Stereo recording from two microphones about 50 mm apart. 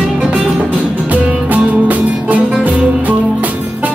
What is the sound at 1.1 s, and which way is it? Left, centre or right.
Music, right.